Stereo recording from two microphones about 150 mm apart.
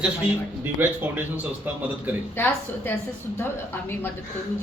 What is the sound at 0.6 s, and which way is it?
Speech, 15° right (ahead or behind).